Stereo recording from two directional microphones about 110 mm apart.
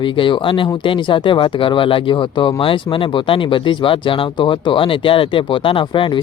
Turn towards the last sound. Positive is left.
turn(degrees=50)  # may be behind; listen again after turning